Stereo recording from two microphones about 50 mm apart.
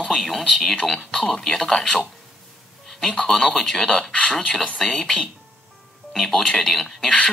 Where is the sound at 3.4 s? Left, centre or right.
Centre.